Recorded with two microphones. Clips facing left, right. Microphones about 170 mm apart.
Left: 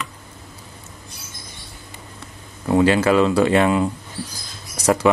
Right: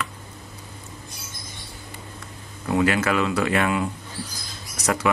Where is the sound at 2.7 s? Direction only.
30° left (ahead or behind).